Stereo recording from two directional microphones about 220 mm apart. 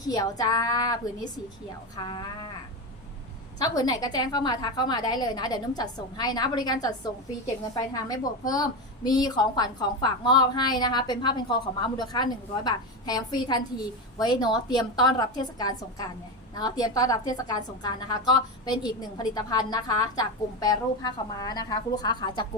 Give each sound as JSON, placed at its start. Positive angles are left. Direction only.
{"t": 0.0, "sound": "a woman's voice", "side_deg": 15}
{"t": 3.6, "sound": "a woman's voice", "side_deg": 15}
{"t": 7.9, "sound": "a woman's voice", "side_deg": 15}